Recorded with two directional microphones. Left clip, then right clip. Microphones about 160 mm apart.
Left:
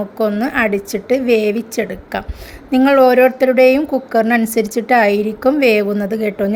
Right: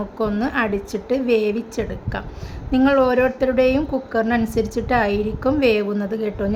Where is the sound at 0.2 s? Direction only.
15° left (ahead or behind).